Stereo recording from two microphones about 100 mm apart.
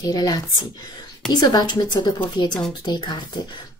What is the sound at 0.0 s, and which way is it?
Speech, 40° left (ahead or behind).